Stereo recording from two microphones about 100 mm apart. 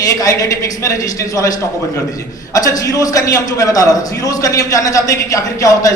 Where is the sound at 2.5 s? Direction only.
35° left (ahead or behind).